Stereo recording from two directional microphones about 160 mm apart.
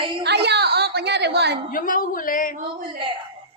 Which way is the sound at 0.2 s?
90° right.